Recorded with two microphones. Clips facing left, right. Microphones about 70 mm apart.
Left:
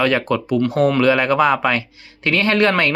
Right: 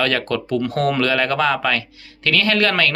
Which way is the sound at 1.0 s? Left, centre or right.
Centre.